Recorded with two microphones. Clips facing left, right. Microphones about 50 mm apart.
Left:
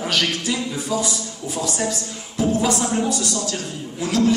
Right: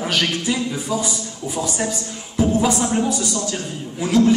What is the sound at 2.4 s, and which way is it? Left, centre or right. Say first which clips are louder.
Music: right 2 dB; centre.